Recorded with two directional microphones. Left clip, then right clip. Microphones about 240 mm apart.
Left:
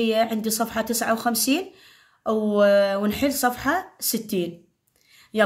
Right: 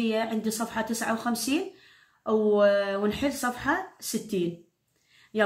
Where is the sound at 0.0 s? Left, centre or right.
Left.